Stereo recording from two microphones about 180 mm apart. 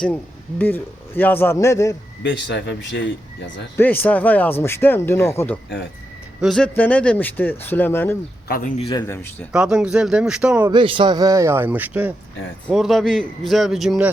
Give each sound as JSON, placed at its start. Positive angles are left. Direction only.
{"t": 0.6, "sound": "speech", "side_deg": 10}
{"t": 2.2, "sound": "speech", "side_deg": 85}
{"t": 3.8, "sound": "speech", "side_deg": 10}
{"t": 6.4, "sound": "speech", "side_deg": 5}
{"t": 8.4, "sound": "a man's voice", "side_deg": 55}
{"t": 8.8, "sound": "a man's voice", "side_deg": 25}
{"t": 9.5, "sound": "a man's voice", "side_deg": -5}
{"t": 10.7, "sound": "a man's voice", "side_deg": -30}